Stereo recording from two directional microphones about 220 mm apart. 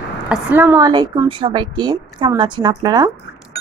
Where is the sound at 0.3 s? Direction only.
5° right (ahead or behind).